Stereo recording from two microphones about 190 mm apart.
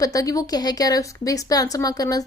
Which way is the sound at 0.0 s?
20° left (ahead or behind).